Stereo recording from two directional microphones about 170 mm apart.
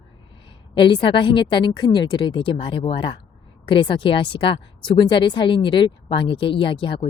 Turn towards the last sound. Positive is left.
turn(degrees=30)  # may be behind; listen again after turning